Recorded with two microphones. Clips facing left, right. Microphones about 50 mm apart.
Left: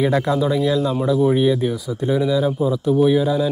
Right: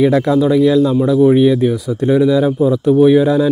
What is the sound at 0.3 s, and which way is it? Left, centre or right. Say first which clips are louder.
A man's voice: right 7 dB; centre.